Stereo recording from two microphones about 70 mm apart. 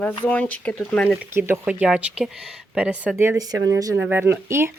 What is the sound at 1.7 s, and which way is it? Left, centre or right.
Speech, centre.